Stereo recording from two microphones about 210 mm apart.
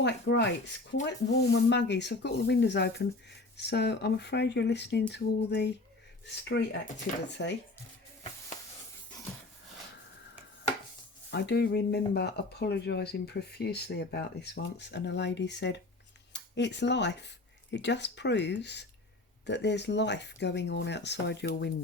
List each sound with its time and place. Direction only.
0.0 s speech: 55° left (ahead or behind)
11.3 s speech: 55° left (ahead or behind)